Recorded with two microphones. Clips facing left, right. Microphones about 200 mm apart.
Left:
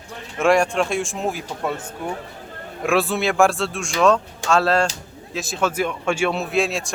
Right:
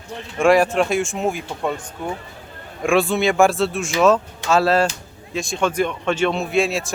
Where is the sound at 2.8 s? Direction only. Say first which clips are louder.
Right 3 dB; centre (ahead or behind).